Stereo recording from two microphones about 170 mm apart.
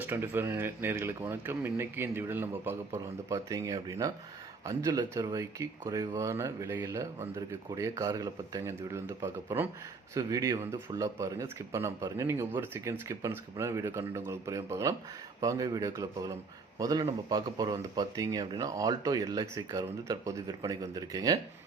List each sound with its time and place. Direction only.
0.0 s speech: 10° right (ahead or behind)